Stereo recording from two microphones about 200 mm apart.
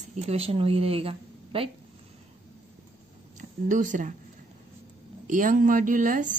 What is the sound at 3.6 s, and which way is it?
Speech, 40° right (ahead or behind).